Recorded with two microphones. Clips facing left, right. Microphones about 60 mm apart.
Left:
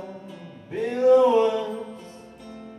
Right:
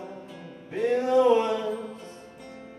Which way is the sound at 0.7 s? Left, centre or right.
Centre.